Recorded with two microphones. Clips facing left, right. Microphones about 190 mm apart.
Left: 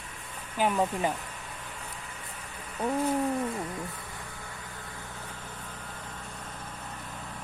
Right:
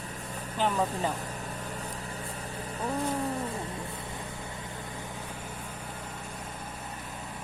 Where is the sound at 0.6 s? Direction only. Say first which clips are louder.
Left 2 dB; 10° left (ahead or behind).